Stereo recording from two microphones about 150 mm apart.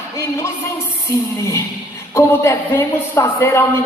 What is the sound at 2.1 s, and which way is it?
A woman's voice, 15° left (ahead or behind).